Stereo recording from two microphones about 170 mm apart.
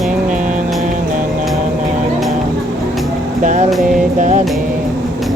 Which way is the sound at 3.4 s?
45° right (ahead or behind).